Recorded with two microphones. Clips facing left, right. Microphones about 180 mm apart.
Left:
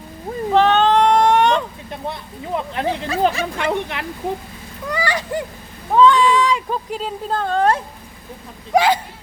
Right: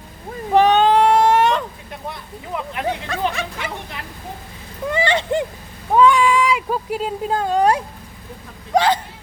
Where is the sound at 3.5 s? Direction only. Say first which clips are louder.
Left 8 dB; 75° left (ahead or behind).